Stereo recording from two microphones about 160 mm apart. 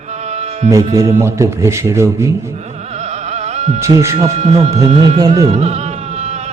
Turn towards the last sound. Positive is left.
turn(degrees=-40)  # may be behind; listen again after turning